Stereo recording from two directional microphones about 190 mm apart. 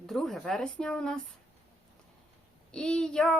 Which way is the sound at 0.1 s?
Centre (ahead or behind).